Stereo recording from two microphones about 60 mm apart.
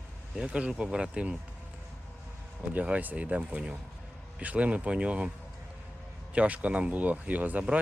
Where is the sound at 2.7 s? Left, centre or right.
Right.